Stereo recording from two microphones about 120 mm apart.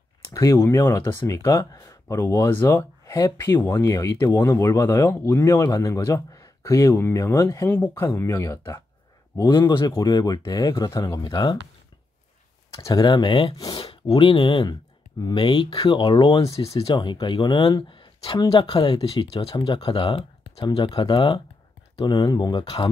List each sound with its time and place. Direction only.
0.3 s speech: 25° left (ahead or behind)
12.7 s speech: 30° left (ahead or behind)
16.7 s speech: 45° left (ahead or behind)
21.9 s speech: 35° left (ahead or behind)